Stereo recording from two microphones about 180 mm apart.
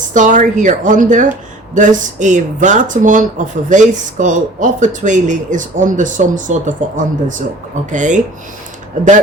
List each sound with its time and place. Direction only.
0.1 s speech: 45° right (ahead or behind)